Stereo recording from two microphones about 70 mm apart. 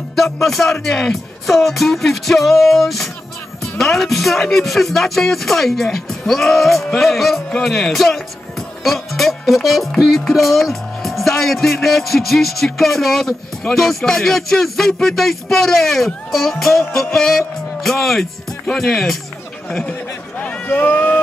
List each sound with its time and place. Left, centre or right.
0.1 s music: centre
0.7 s speech: centre
20.3 s run: left